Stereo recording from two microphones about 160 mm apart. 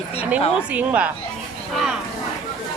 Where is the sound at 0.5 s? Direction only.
10° right (ahead or behind).